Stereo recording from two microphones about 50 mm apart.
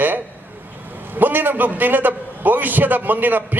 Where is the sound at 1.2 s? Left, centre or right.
Right.